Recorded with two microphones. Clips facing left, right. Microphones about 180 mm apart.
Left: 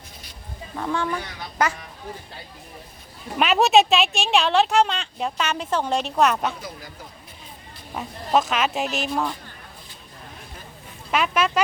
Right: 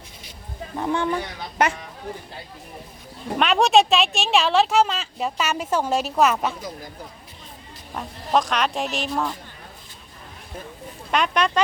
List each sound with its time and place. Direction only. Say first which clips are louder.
0.8 s speech: right 2 dB; 20° right (ahead or behind)
3.3 s speech: even; 5° left (ahead or behind)
7.9 s speech: even; 5° left (ahead or behind)
11.1 s speech: even; 5° left (ahead or behind)